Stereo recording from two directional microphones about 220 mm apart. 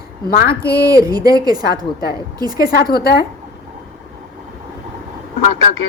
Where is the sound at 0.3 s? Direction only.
45° left (ahead or behind).